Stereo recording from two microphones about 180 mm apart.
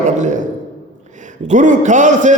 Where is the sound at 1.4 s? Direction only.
45° right (ahead or behind).